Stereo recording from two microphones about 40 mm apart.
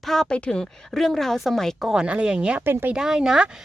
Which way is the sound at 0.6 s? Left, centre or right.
Centre.